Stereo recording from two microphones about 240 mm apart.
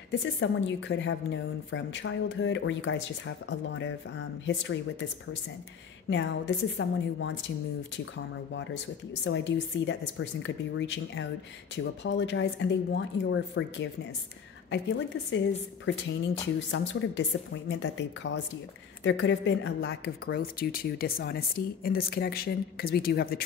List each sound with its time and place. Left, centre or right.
0.1 s a woman's voice: left
6.0 s a woman's voice: left
9.2 s a woman's voice: left